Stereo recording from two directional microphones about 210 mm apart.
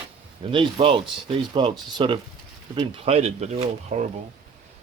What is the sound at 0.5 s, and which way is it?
Speech, 25° right (ahead or behind).